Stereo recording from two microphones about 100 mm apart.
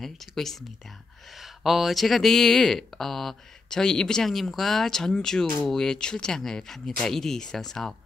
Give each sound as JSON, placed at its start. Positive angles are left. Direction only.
{"t": 0.0, "sound": "speech", "side_deg": 5}